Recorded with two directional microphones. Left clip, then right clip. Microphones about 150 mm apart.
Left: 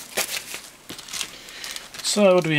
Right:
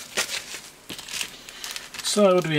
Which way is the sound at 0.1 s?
20° left (ahead or behind).